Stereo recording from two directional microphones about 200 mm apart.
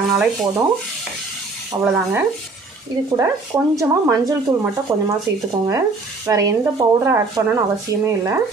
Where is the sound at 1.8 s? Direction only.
10° right (ahead or behind).